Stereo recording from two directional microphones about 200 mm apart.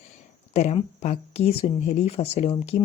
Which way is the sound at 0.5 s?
35° left (ahead or behind).